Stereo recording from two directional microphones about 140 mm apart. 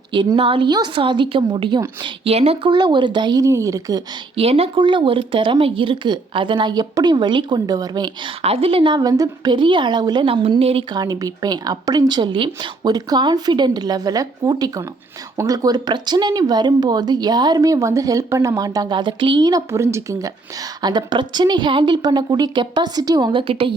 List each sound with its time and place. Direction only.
0.1 s speech: 35° right (ahead or behind)
2.6 s speech: 30° right (ahead or behind)
4.4 s speech: 45° right (ahead or behind); by 8.1 s 30° right (ahead or behind)
8.4 s speech: 45° right (ahead or behind)
10.9 s speech: 25° right (ahead or behind)